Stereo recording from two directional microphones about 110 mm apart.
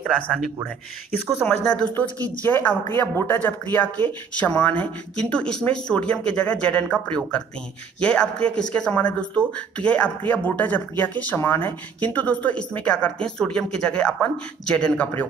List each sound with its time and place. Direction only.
1.4 s speech: 10° left (ahead or behind)